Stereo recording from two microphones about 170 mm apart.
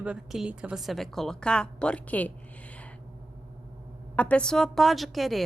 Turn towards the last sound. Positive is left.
turn(degrees=0)  # may be behind; listen again after turning